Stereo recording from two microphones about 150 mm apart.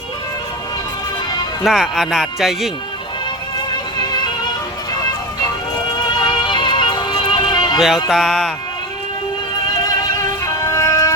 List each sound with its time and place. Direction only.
1.6 s speech: centre (ahead or behind)
3.9 s music: 30° left (ahead or behind)
6.1 s music: 30° left (ahead or behind)
7.8 s speech: 5° right (ahead or behind)
9.7 s music: 25° left (ahead or behind)